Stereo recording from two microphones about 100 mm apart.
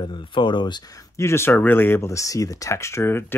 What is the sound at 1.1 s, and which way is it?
Speech, 25° left (ahead or behind).